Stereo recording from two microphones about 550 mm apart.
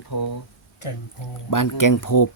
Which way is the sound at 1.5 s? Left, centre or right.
Left.